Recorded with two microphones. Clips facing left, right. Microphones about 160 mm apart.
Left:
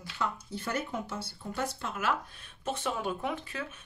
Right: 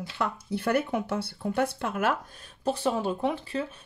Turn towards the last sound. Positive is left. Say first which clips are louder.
# right 6 dB
turn(degrees=-30)  # may be behind; listen again after turning